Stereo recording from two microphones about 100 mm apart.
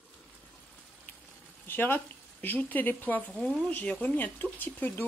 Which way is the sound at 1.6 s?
20° left (ahead or behind).